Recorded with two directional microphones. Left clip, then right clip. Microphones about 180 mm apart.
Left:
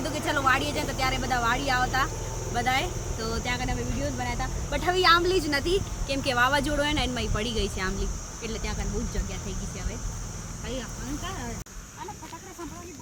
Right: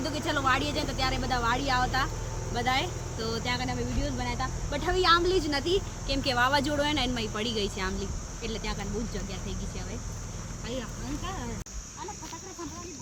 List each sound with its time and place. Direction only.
0.0 s speech: 15° left (ahead or behind); by 9.2 s centre (ahead or behind)